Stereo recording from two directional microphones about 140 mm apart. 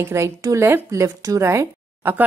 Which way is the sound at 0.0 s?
20° right (ahead or behind).